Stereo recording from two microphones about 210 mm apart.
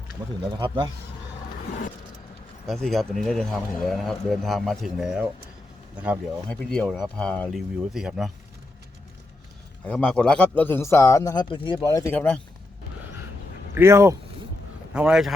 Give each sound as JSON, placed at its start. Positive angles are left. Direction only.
{"t": 0.5, "sound": "speech", "side_deg": -25}
{"t": 2.6, "sound": "a man's voice", "side_deg": 0}
{"t": 6.5, "sound": "a man's voice", "side_deg": 5}
{"t": 9.8, "sound": "a man's voice", "side_deg": 5}
{"t": 13.7, "sound": "a man's voice", "side_deg": -15}